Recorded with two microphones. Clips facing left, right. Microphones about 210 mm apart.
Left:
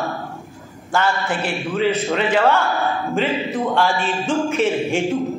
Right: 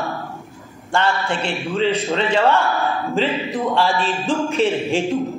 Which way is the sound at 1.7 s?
30° right (ahead or behind).